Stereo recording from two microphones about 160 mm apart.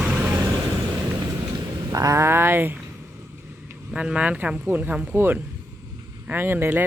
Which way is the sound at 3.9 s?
5° right (ahead or behind).